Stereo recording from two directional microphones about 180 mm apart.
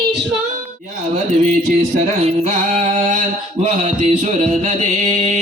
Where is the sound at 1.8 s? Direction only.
40° right (ahead or behind).